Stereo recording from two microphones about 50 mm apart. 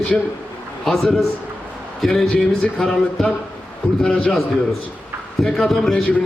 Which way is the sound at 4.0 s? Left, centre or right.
Centre.